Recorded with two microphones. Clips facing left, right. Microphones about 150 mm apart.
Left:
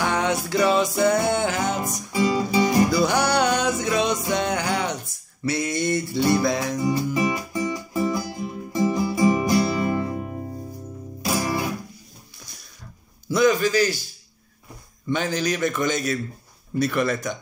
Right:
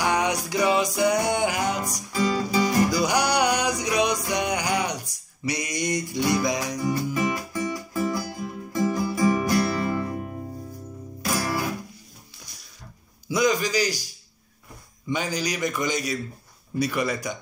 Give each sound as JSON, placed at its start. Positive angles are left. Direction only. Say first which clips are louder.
{"t": 0.0, "sound": "music", "louder": "left 1 dB", "side_deg": -15}
{"t": 2.1, "sound": "music", "louder": "left 2 dB", "side_deg": 20}
{"t": 2.9, "sound": "music", "louder": "left 2 dB", "side_deg": -15}
{"t": 6.8, "sound": "music", "louder": "left 2 dB", "side_deg": 20}
{"t": 13.3, "sound": "a man's voice", "louder": "left 4 dB", "side_deg": -15}
{"t": 15.0, "sound": "a man's voice", "louder": "left 3 dB", "side_deg": -15}